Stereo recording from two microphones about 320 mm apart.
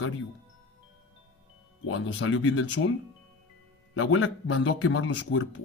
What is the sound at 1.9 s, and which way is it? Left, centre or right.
Speech, left.